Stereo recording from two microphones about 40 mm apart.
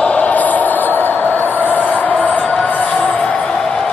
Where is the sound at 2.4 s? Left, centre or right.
Left.